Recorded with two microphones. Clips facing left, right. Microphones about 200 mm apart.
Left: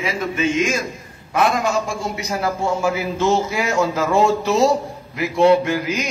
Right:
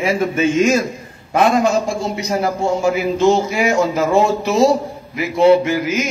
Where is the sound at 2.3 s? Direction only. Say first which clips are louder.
Right 3 dB; 20° right (ahead or behind).